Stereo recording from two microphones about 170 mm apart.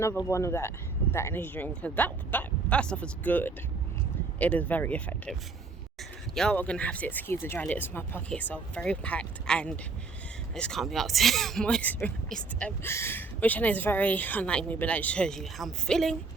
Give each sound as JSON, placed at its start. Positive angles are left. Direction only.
{"t": 0.3, "sound": "speech", "side_deg": 15}